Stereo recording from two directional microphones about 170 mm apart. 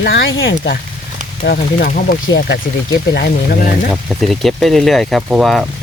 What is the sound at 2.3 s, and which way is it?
Speech, 75° left (ahead or behind).